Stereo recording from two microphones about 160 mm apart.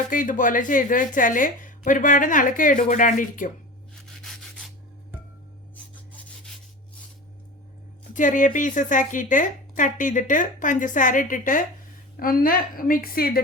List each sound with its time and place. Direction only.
0.1 s a woman's voice: 55° left (ahead or behind)
4.2 s rub: centre (ahead or behind)
5.7 s rub: 10° left (ahead or behind)
8.1 s a woman's voice: 55° left (ahead or behind); by 13.4 s 70° left (ahead or behind)